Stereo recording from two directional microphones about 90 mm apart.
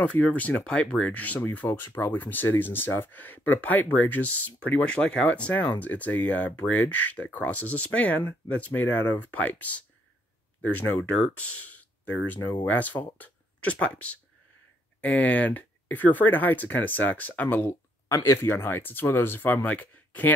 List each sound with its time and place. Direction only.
0.0 s speech: 15° left (ahead or behind)
18.0 s speech: 35° left (ahead or behind)